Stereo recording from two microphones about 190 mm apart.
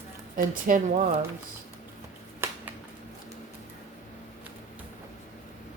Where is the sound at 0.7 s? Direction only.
45° right (ahead or behind).